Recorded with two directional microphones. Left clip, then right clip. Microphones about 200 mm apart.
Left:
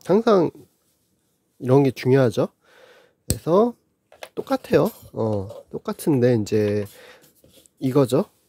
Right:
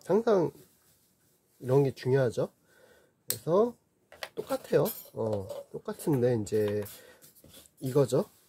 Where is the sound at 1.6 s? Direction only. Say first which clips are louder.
Left 8 dB; 40° left (ahead or behind).